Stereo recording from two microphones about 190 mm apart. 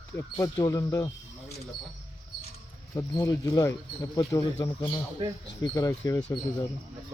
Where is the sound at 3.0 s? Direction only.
15° left (ahead or behind).